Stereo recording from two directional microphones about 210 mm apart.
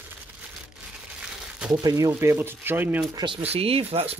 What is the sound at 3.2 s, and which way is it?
Speech, 25° right (ahead or behind).